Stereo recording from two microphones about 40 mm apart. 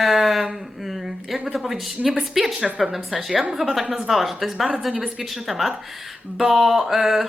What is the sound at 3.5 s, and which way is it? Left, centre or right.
Speech, centre.